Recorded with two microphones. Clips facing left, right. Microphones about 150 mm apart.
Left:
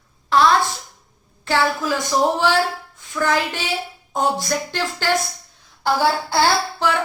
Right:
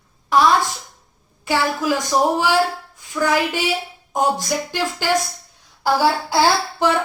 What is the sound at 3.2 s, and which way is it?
A woman's voice, 10° right (ahead or behind).